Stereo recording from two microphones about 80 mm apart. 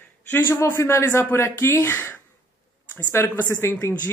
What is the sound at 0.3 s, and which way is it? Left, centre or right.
Speech, left.